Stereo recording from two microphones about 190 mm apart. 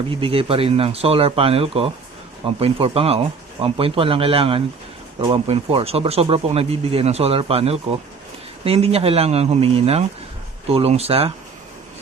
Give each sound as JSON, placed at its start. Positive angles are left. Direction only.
{"t": 0.1, "sound": "speech", "side_deg": -30}